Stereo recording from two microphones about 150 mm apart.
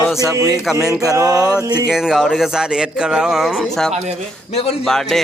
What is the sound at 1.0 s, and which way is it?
Speech, 25° right (ahead or behind).